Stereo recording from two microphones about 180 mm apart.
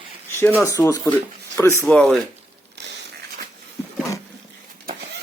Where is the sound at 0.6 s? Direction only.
15° left (ahead or behind).